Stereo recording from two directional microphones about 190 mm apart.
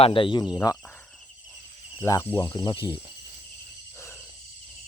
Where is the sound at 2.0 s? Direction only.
15° left (ahead or behind).